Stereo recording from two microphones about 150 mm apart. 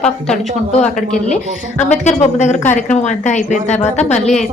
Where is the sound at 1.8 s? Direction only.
50° left (ahead or behind).